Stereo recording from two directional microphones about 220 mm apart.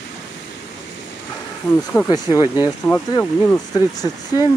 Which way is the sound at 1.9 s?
15° left (ahead or behind).